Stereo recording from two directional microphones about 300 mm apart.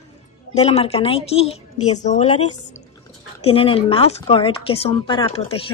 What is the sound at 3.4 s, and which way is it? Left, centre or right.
Speech, centre.